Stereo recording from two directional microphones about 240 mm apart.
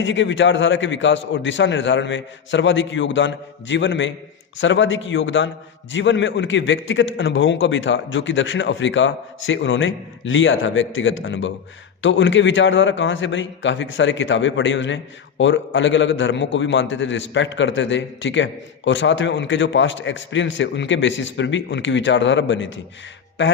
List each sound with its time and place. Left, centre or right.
0.0 s a man's voice: left